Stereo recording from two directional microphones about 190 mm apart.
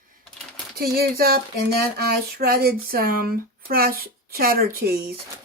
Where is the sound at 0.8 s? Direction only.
55° right (ahead or behind).